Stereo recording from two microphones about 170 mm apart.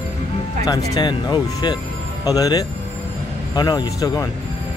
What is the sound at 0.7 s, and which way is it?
Speech, 25° left (ahead or behind).